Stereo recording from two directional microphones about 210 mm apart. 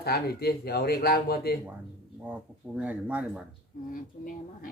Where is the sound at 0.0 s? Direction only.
50° left (ahead or behind).